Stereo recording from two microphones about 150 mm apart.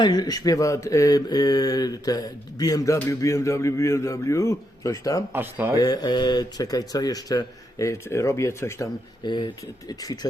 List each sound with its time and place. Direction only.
0.0 s speech: 25° left (ahead or behind)
5.3 s speech: 15° right (ahead or behind)
5.7 s speech: 25° left (ahead or behind)
9.2 s speech: 30° left (ahead or behind)